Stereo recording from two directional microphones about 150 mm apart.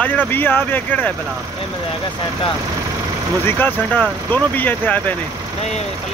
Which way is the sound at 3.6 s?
10° left (ahead or behind).